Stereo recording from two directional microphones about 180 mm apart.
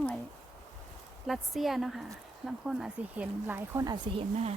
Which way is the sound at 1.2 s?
Centre (ahead or behind).